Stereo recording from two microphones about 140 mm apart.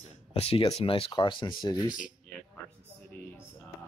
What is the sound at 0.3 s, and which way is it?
Speech, 45° left (ahead or behind).